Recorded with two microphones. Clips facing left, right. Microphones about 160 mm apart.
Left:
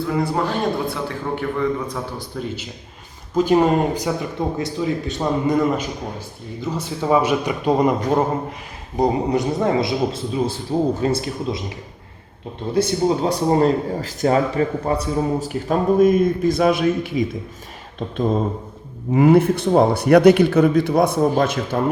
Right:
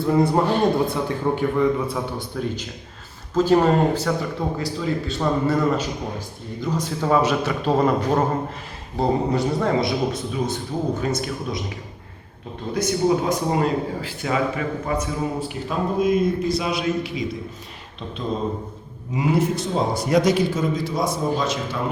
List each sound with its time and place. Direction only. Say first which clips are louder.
0.0 s a man's voice: right 3 dB; 25° right (ahead or behind)
2.3 s a man's voice: right 1 dB; centre (ahead or behind)
3.3 s a man's voice: left 1 dB; 10° left (ahead or behind); by 11.6 s 30° left (ahead or behind)
12.7 s a man's voice: left 2 dB; 30° left (ahead or behind); by 17.2 s 50° left (ahead or behind)
19.1 s a man's voice: left 7 dB; 55° left (ahead or behind)